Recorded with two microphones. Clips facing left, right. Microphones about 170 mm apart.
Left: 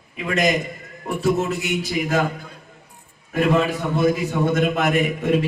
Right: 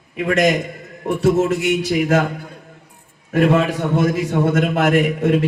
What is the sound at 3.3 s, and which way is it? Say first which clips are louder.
A man's voice: right 3 dB; 90° right.